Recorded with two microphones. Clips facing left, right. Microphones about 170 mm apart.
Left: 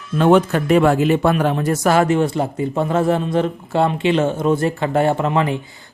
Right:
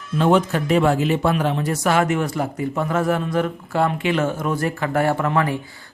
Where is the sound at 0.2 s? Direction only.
60° left (ahead or behind).